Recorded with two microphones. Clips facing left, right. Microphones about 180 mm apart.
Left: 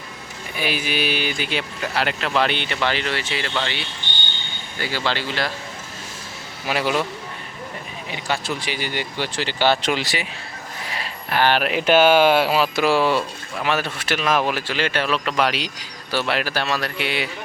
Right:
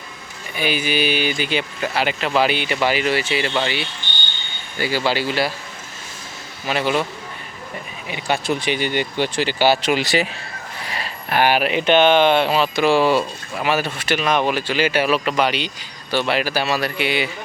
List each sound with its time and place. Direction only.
0.5 s speech: centre (ahead or behind)
6.7 s speech: 5° left (ahead or behind)
8.1 s speech: 15° right (ahead or behind)
11.3 s speech: 15° right (ahead or behind)